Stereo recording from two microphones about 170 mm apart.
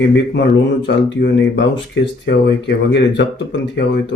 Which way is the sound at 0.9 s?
90° left.